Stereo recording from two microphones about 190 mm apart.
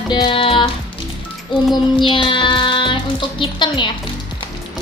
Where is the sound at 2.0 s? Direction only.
25° left (ahead or behind).